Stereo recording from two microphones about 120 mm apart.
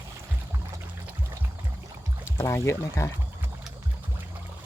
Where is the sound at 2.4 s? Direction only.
25° left (ahead or behind).